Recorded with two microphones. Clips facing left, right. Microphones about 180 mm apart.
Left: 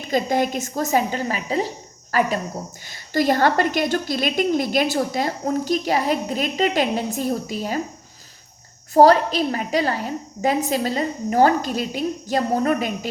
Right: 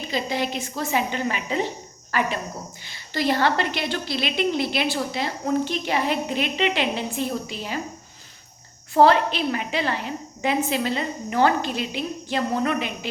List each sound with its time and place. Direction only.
0.1 s a woman's voice: 45° left (ahead or behind)
8.9 s a woman's voice: 40° left (ahead or behind)